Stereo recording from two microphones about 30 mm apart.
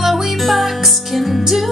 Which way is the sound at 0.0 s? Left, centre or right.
Centre.